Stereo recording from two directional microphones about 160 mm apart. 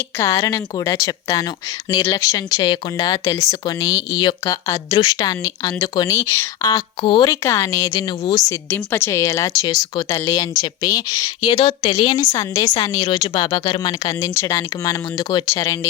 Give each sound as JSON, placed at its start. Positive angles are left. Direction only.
{"t": 0.2, "sound": "speech", "side_deg": 20}
{"t": 7.4, "sound": "speech", "side_deg": 20}
{"t": 8.4, "sound": "speech", "side_deg": 15}